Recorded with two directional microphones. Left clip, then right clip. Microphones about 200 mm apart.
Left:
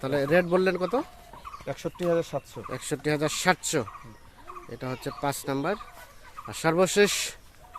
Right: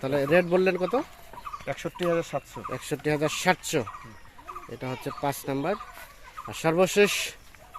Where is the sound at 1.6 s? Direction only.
35° left (ahead or behind).